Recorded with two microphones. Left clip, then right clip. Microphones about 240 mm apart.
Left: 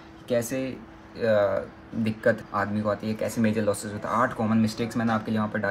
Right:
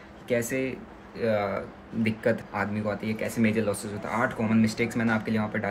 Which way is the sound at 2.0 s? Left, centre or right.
Centre.